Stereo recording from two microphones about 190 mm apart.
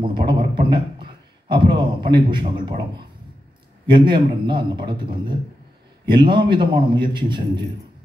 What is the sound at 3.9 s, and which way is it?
Speech, 25° right (ahead or behind).